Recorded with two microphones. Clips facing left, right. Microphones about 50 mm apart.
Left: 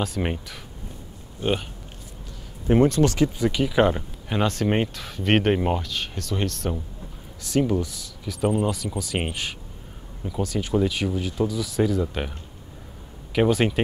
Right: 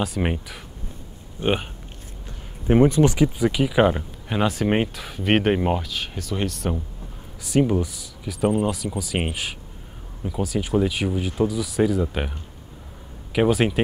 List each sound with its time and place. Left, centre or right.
0.0 s speech: centre
1.4 s speech: right; by 13.7 s centre